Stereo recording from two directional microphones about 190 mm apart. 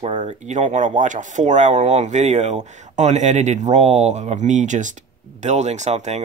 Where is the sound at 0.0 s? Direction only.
35° right (ahead or behind).